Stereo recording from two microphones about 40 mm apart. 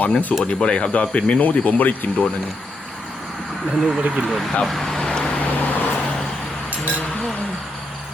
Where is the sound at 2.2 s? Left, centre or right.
Left.